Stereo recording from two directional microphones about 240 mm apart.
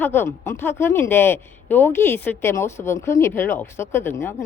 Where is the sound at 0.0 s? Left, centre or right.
Centre.